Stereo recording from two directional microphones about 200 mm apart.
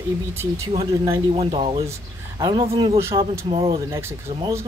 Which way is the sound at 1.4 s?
30° right (ahead or behind).